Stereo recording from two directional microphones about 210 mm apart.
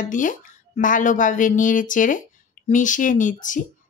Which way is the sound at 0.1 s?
40° left (ahead or behind).